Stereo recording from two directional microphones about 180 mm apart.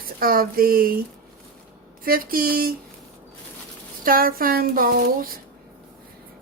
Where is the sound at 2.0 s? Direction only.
55° right (ahead or behind).